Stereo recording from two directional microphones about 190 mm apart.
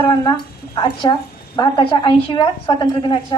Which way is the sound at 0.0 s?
25° left (ahead or behind).